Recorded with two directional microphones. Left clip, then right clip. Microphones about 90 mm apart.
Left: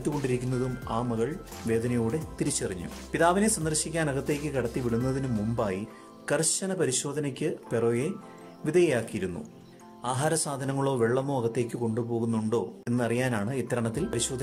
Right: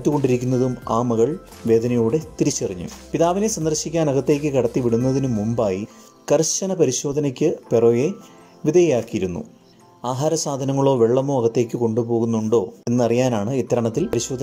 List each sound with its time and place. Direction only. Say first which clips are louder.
0.5 s speech: right 10 dB; 5° right (ahead or behind)
0.8 s speech: right 11 dB; 40° right (ahead or behind)
2.1 s a man's voice: right 10 dB; 25° right (ahead or behind)